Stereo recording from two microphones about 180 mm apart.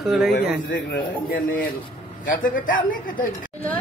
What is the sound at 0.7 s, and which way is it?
Speech, 55° left (ahead or behind).